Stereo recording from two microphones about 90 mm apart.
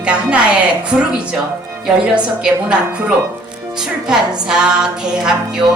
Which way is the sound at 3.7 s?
5° right (ahead or behind).